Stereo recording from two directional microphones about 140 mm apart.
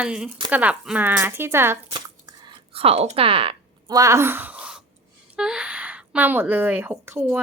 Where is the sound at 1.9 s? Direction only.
30° right (ahead or behind).